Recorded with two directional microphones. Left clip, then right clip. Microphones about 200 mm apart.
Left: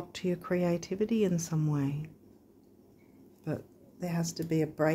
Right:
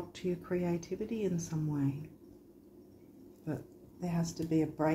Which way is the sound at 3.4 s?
55° left (ahead or behind).